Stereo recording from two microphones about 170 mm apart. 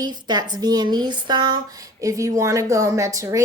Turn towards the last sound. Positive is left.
turn(degrees=-20)  # may be behind; listen again after turning